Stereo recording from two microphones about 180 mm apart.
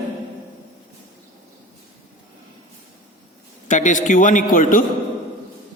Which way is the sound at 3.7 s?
45° left (ahead or behind).